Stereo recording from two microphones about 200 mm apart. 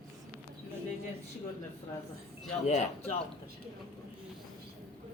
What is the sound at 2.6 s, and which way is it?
Speech, 35° left (ahead or behind).